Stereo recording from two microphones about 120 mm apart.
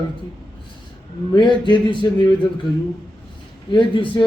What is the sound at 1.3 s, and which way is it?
Speech, 40° left (ahead or behind).